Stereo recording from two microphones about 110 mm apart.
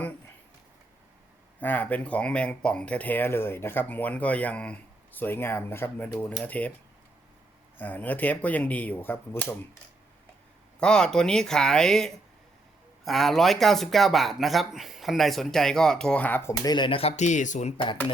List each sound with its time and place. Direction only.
1.6 s speech: 15° left (ahead or behind)
7.8 s speech: 15° left (ahead or behind)
10.8 s speech: 5° left (ahead or behind)
16.5 s speech: 40° left (ahead or behind)
17.0 s speech: 80° left